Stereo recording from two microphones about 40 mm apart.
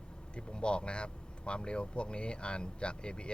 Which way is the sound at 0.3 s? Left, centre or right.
Left.